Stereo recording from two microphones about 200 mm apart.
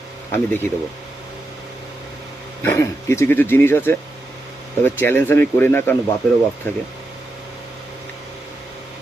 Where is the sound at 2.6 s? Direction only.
15° left (ahead or behind).